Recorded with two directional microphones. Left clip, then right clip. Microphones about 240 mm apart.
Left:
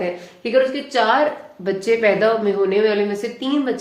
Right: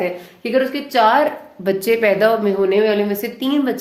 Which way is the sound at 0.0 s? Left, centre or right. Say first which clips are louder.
Right 2 dB; right.